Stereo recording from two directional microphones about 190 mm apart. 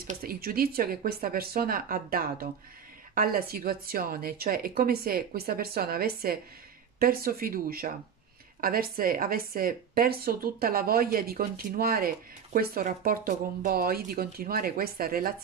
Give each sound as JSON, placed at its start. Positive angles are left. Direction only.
{"t": 0.1, "sound": "speech", "side_deg": -50}